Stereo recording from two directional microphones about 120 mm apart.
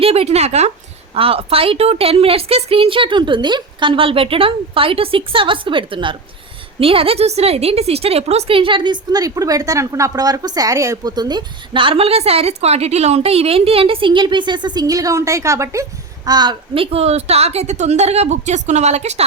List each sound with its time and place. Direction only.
0.0 s speech: 55° right (ahead or behind)
1.1 s a woman's voice: 50° right (ahead or behind); by 19.2 s 65° right (ahead or behind)